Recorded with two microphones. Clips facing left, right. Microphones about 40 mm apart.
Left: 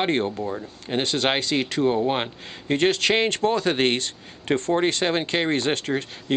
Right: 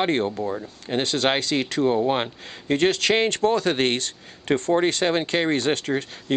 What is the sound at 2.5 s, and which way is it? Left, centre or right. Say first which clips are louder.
Speech: even; left.